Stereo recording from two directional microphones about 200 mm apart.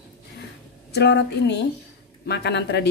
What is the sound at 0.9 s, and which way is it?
Speech, 60° left (ahead or behind).